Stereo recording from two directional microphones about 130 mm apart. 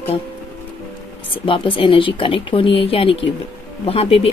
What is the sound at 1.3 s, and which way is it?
Speech, 40° left (ahead or behind).